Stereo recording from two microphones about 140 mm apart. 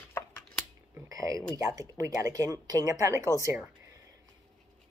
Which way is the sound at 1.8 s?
25° right (ahead or behind).